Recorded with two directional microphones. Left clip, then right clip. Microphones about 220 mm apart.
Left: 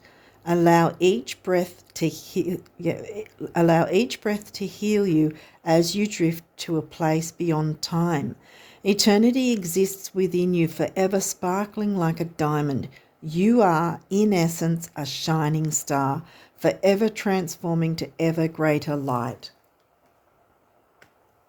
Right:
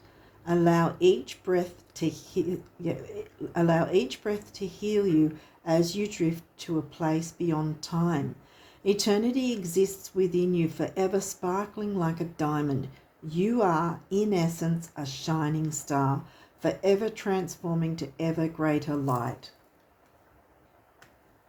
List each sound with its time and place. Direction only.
0.4 s speech: 50° left (ahead or behind)